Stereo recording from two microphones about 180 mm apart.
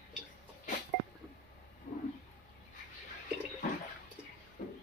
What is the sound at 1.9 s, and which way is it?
Roaring cats, 45° left (ahead or behind).